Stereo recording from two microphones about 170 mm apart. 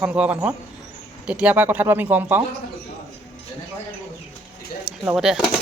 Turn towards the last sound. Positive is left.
turn(degrees=-5)  # may be behind; listen again after turning